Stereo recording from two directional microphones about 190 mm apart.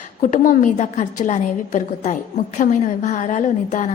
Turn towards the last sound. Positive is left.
turn(degrees=40)  # may be behind; listen again after turning